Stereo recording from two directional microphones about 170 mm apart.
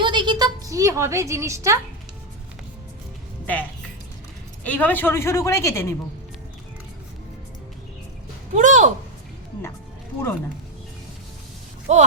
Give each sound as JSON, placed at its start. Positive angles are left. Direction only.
{"t": 0.0, "sound": "a woman's voice", "side_deg": -25}
{"t": 3.4, "sound": "speech", "side_deg": 10}
{"t": 8.5, "sound": "speech", "side_deg": -45}
{"t": 11.9, "sound": "speech", "side_deg": -40}